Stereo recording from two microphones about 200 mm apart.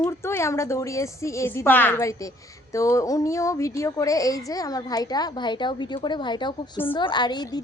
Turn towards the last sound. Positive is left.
turn(degrees=20)  # may be behind; listen again after turning